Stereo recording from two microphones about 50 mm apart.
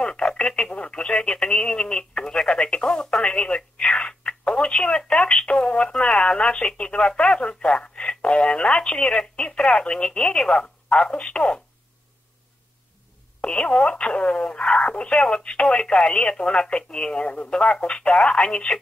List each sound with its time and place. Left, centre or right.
0.0 s speech: centre
13.4 s speech: left